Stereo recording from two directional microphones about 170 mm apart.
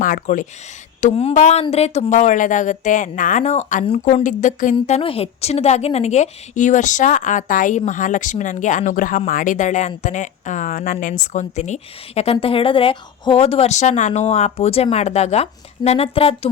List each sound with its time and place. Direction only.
0.0 s a woman's voice: 50° left (ahead or behind)
1.0 s a woman's voice: 40° left (ahead or behind)
4.7 s a woman's voice: 35° left (ahead or behind)